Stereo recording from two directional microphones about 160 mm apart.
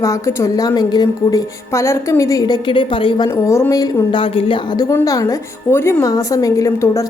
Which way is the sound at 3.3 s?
15° left (ahead or behind).